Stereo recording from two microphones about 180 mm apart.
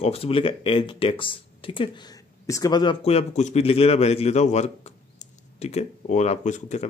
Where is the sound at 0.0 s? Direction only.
30° left (ahead or behind).